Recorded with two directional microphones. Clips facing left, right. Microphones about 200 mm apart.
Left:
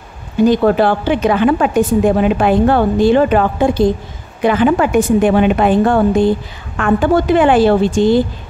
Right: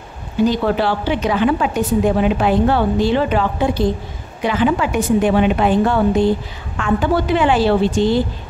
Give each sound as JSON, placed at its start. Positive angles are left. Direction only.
{"t": 0.5, "sound": "a woman's voice", "side_deg": 50}